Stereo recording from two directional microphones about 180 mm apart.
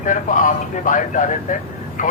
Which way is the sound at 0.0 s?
45° left (ahead or behind).